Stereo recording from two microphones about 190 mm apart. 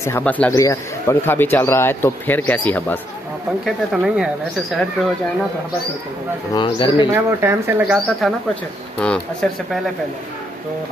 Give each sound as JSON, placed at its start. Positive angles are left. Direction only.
{"t": 0.0, "sound": "speech", "side_deg": 10}
{"t": 3.6, "sound": "speech", "side_deg": -5}
{"t": 6.5, "sound": "speech", "side_deg": 25}
{"t": 7.1, "sound": "speech", "side_deg": -10}
{"t": 9.0, "sound": "speech", "side_deg": 5}